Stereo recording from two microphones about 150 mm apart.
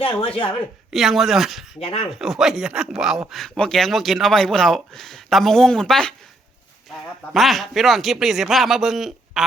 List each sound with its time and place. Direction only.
0.0 s speech: 35° left (ahead or behind)
0.9 s speech: centre (ahead or behind)
1.8 s speech: 40° left (ahead or behind)
2.0 s speech: centre (ahead or behind)
7.3 s speech: centre (ahead or behind)